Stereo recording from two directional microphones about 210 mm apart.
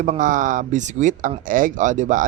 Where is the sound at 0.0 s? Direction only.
35° right (ahead or behind).